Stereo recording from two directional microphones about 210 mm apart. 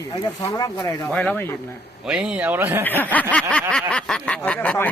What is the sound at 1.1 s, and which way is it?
Speech, 5° left (ahead or behind).